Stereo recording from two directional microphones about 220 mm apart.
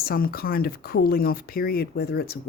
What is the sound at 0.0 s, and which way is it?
Speech, 45° left (ahead or behind).